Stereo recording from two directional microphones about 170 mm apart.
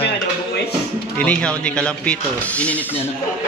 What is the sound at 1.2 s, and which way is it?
Speech, 5° left (ahead or behind).